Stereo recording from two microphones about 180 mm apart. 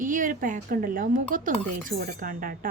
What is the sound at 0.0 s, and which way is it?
A woman's voice, 50° right (ahead or behind).